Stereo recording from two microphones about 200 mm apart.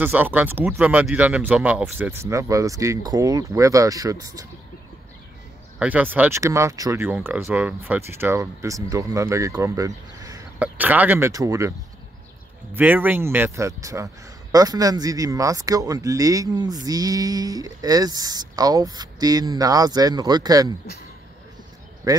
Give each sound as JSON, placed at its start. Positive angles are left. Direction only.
{"t": 0.0, "sound": "speech", "side_deg": -10}
{"t": 5.8, "sound": "speech", "side_deg": -10}
{"t": 12.7, "sound": "speech", "side_deg": -10}
{"t": 22.0, "sound": "speech", "side_deg": -15}